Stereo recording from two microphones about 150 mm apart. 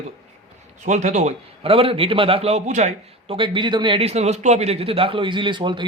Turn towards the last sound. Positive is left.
turn(degrees=-30)  # may be behind; listen again after turning